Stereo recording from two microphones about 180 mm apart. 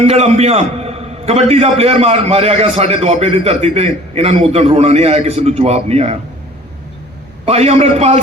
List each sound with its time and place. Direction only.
0.0 s a man's voice: 35° right (ahead or behind)
7.4 s a man's voice: 35° right (ahead or behind)